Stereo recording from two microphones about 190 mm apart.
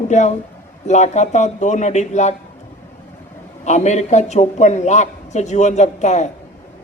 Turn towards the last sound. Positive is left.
turn(degrees=35)  # may be behind; listen again after turning